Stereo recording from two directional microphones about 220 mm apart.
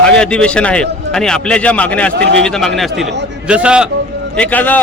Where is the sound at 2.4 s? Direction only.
Centre (ahead or behind).